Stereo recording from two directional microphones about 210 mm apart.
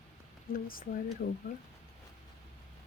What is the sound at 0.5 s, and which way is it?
Speech, 40° left (ahead or behind).